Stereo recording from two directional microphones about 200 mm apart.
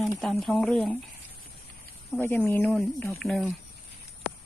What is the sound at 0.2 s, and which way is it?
Speech, centre (ahead or behind).